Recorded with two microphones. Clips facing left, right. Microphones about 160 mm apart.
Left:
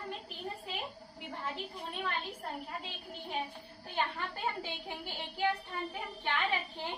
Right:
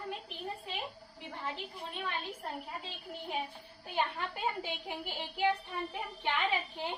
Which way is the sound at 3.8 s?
15° right (ahead or behind).